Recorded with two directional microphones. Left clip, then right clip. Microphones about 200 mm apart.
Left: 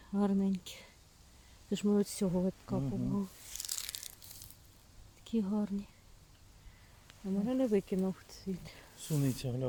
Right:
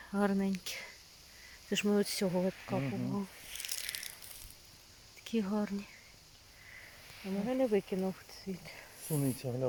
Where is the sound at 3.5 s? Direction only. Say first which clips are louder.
Right 1 dB; 25° left (ahead or behind).